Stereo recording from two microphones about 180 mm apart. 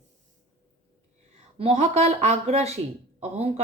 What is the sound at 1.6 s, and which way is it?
Speech, 35° right (ahead or behind).